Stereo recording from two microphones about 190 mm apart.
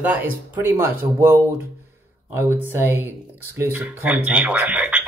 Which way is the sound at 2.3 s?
10° right (ahead or behind).